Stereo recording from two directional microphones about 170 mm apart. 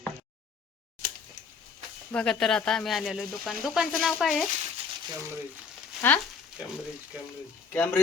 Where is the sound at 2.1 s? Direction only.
5° left (ahead or behind).